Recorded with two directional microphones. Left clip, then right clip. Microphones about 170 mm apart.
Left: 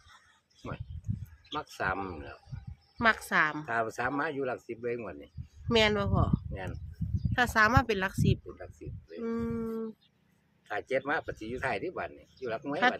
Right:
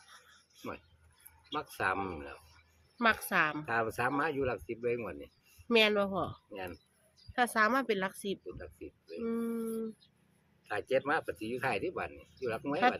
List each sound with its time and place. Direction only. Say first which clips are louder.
1.7 s speech: even; 10° left (ahead or behind)
3.0 s speech: left 3 dB; 20° left (ahead or behind)
3.7 s speech: left 1 dB; 10° left (ahead or behind)
5.6 s speech: left 1 dB; 20° left (ahead or behind)
7.3 s speech: left 4 dB; 25° left (ahead or behind)
8.5 s speech: left 1 dB; 10° left (ahead or behind)
9.2 s speech: left 2 dB; 25° left (ahead or behind)
10.7 s speech: even; 10° left (ahead or behind)